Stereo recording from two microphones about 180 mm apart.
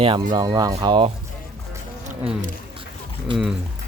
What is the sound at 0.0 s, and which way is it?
Speech, 25° right (ahead or behind).